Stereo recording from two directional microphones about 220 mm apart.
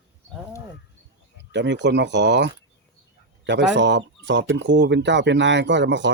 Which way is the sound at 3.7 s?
55° right (ahead or behind).